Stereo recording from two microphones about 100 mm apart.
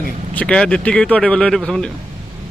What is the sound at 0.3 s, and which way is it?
Speech, 10° left (ahead or behind).